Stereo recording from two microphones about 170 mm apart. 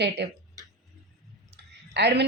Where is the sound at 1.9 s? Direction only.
80° right.